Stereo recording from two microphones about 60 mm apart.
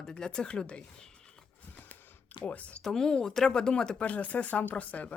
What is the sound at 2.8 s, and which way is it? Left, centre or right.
Speech, centre.